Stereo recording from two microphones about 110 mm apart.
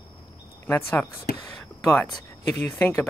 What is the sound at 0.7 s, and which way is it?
Speech, 25° left (ahead or behind).